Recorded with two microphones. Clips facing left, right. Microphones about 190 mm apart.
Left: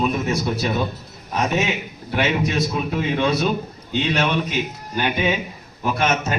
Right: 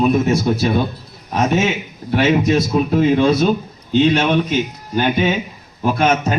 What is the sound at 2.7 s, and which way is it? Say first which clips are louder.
Speech: right 8 dB; 40° right (ahead or behind).